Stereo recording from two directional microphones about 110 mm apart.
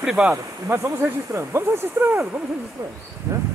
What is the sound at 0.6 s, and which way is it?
Speech, 25° right (ahead or behind).